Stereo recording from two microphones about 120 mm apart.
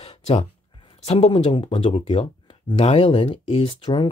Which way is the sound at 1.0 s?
55° left (ahead or behind).